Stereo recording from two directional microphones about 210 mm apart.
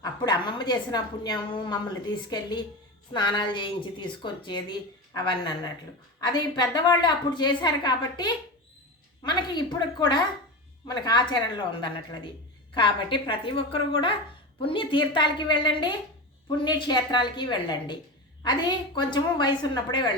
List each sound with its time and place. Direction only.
0.0 s a woman's voice: 20° left (ahead or behind)